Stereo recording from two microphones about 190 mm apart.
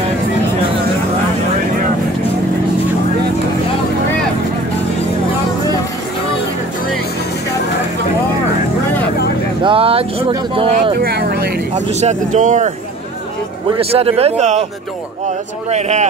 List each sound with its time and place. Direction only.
9.6 s a sound: 30° right (ahead or behind)
10.7 s speech: 55° right (ahead or behind)
11.9 s speech: 35° right (ahead or behind)
13.7 s speech: 30° right (ahead or behind)